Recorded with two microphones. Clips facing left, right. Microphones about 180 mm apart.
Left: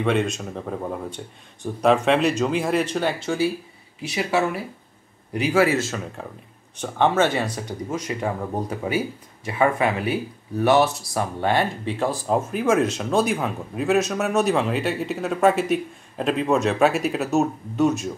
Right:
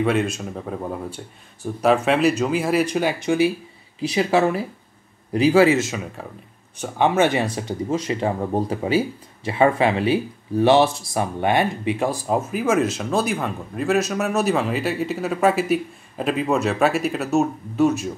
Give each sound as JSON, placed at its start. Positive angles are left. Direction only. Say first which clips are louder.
{"t": 0.0, "sound": "speech", "louder": "right 1 dB", "side_deg": -5}
{"t": 4.0, "sound": "speech", "louder": "right 4 dB", "side_deg": -35}
{"t": 5.7, "sound": "speech", "louder": "right 4 dB", "side_deg": -20}
{"t": 6.2, "sound": "speech", "louder": "even", "side_deg": -5}